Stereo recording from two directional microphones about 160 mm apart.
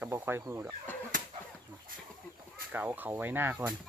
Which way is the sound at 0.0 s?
15° right (ahead or behind).